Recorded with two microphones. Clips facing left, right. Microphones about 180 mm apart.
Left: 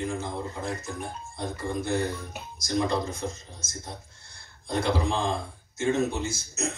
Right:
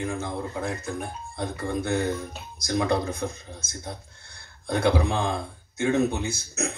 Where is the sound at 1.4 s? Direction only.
60° right (ahead or behind).